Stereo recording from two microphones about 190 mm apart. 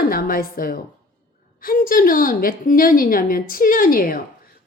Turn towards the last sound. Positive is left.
turn(degrees=50)  # may be behind; listen again after turning